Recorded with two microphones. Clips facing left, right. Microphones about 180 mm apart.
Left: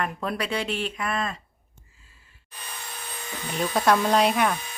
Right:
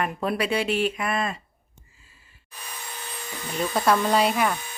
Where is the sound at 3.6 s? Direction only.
Centre (ahead or behind).